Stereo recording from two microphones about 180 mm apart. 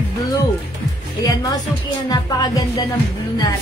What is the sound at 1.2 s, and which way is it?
Music, 20° left (ahead or behind).